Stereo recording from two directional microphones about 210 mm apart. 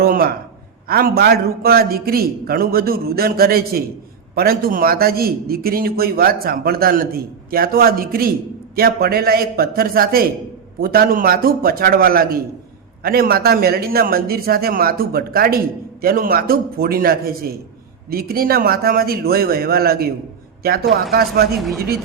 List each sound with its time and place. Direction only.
0.0 s a man's voice: 45° right (ahead or behind)